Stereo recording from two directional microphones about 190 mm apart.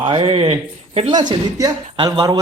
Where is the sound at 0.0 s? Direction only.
25° right (ahead or behind).